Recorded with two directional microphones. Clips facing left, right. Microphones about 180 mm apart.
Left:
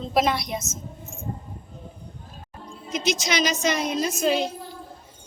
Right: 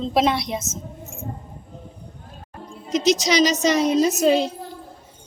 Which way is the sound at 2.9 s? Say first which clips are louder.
Right 6 dB; 40° right (ahead or behind).